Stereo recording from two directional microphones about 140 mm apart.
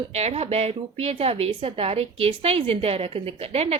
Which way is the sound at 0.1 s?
50° right (ahead or behind).